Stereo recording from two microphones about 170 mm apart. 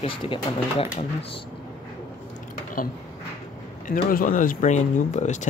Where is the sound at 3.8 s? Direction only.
55° left (ahead or behind).